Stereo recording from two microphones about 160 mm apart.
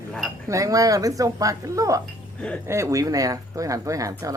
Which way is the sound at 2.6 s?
15° right (ahead or behind).